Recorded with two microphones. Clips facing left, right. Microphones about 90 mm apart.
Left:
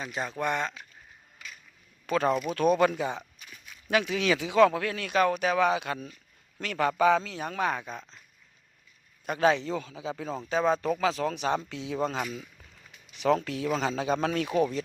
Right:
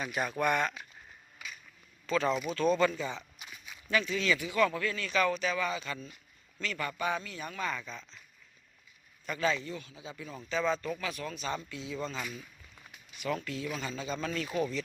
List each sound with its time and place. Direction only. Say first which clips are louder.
0.0 s speech: even; 25° left (ahead or behind)
2.0 s speech: left 4 dB; 55° left (ahead or behind)
2.5 s speech: left 4 dB; 65° left (ahead or behind)
3.8 s speech: left 4 dB; 70° left (ahead or behind); by 8.2 s 50° left (ahead or behind)
9.2 s speech: left 7 dB; 60° left (ahead or behind); by 10.4 s 90° left
10.5 s speech: left 5 dB; 50° left (ahead or behind)
10.8 s speech: left 9 dB; 80° left
13.1 s speech: left 9 dB; 85° left; by 14.8 s 55° left (ahead or behind)